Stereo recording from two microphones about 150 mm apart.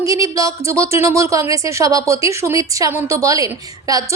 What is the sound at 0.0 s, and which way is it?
A woman's voice, 20° right (ahead or behind).